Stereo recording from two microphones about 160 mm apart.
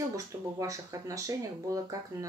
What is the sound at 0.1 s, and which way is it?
Speech, 20° right (ahead or behind).